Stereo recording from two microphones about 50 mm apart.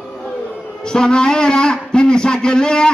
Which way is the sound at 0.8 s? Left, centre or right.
Centre.